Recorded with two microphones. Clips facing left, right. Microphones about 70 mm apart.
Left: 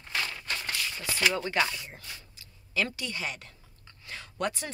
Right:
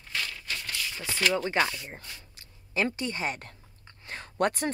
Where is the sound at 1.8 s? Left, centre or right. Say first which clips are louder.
Right 2 dB; right.